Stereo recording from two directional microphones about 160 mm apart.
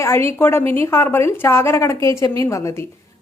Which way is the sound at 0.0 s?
15° left (ahead or behind).